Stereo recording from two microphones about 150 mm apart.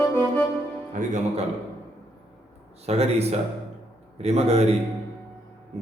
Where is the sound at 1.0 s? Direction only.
50° right (ahead or behind).